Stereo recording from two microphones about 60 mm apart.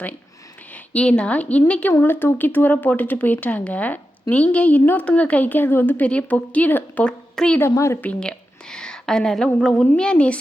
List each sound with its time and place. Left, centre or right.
0.7 s speech: centre
2.0 s speech: left
6.0 s speech: left
7.0 s a woman's voice: centre
7.6 s a woman's voice: left
8.2 s a woman's voice: centre